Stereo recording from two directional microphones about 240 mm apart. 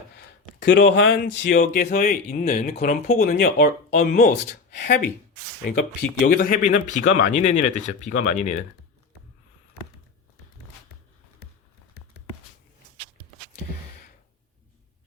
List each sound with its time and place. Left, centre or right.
0.7 s speech: left
1.5 s speech: left
6.2 s speech: left